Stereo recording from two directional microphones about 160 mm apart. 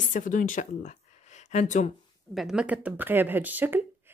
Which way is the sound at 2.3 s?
5° right (ahead or behind).